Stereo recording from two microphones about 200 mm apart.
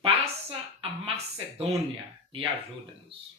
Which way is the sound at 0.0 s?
25° right (ahead or behind).